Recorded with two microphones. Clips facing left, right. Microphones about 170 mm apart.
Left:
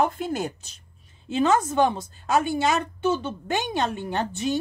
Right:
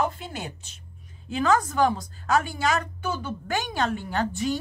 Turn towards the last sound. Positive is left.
turn(degrees=20)  # may be behind; listen again after turning